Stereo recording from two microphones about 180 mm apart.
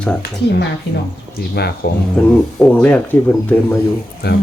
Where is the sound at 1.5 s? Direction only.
65° left (ahead or behind).